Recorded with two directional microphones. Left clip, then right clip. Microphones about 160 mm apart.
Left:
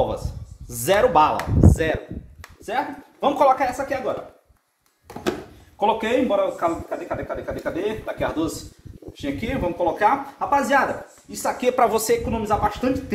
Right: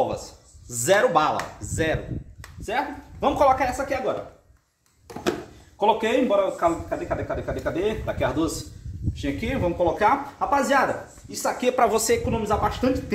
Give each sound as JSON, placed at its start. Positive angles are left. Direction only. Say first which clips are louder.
{"t": 0.7, "sound": "a man's voice", "louder": "left 1 dB", "side_deg": 25}
{"t": 5.0, "sound": "a sound", "louder": "even", "side_deg": 0}
{"t": 5.8, "sound": "a man's voice", "louder": "even", "side_deg": 20}
{"t": 11.6, "sound": "speech", "louder": "left 2 dB", "side_deg": 20}